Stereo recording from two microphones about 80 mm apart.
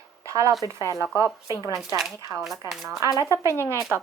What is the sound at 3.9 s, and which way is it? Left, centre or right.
Speech, right.